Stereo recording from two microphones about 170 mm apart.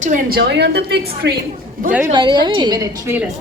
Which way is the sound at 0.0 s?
55° right (ahead or behind).